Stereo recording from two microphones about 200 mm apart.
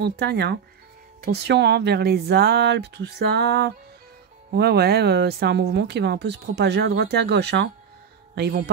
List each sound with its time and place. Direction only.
0.0 s speech: 55° right (ahead or behind)